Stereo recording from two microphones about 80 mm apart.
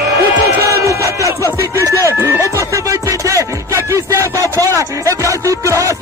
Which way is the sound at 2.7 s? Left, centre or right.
Right.